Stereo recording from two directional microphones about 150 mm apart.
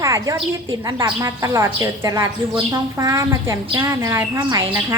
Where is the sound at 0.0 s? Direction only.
20° right (ahead or behind).